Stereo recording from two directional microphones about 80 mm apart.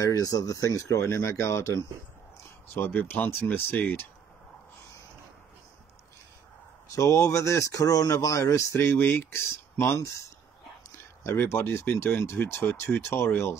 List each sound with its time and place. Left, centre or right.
0.0 s speech: left
2.7 s speech: left
7.0 s speech: left
11.2 s speech: left